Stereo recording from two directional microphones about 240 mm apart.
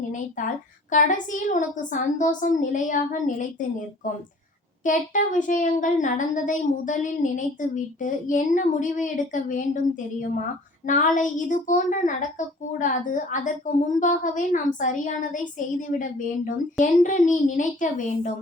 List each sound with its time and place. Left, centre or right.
0.1 s speech: left